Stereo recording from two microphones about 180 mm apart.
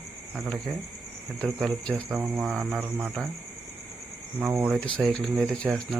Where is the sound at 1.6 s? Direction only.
5° left (ahead or behind).